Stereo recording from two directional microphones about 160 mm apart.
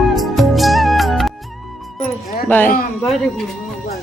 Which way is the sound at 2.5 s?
10° left (ahead or behind).